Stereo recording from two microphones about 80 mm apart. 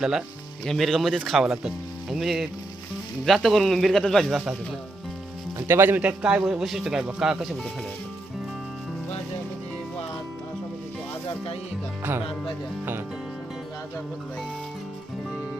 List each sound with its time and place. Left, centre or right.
0.0 s speech: centre
0.6 s speech: centre
5.5 s speech: right
6.0 s speech: centre